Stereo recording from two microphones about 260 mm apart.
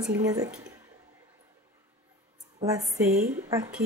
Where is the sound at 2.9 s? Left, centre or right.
Centre.